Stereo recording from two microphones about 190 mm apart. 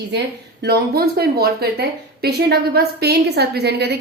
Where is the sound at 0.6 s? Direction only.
55° right (ahead or behind).